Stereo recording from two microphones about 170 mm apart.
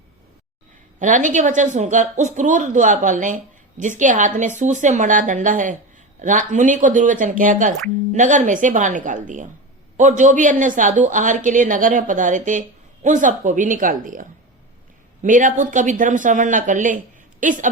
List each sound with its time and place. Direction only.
0.9 s a woman's voice: 50° right (ahead or behind)